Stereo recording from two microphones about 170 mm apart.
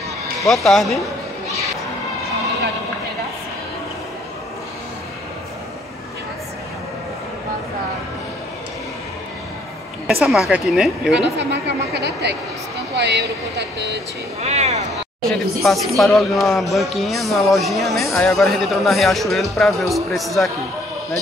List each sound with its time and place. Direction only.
0.4 s speech: centre (ahead or behind)
10.0 s speech: centre (ahead or behind)
11.3 s a woman's voice: 80° right
14.4 s speech: 40° right (ahead or behind)
15.2 s speech: centre (ahead or behind)